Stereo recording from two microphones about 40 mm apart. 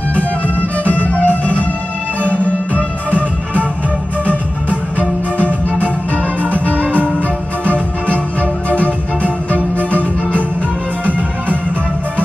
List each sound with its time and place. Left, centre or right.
0.1 s music: left
4.3 s music: left
11.1 s music: right